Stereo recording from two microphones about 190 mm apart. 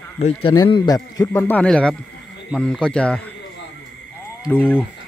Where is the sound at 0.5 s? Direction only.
25° left (ahead or behind); by 3.2 s 5° left (ahead or behind).